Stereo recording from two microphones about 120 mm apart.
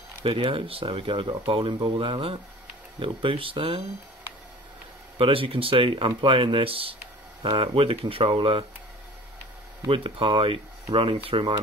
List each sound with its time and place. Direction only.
0.2 s speech: 50° right (ahead or behind)
5.1 s speech: 50° right (ahead or behind)
9.8 s speech: 50° right (ahead or behind)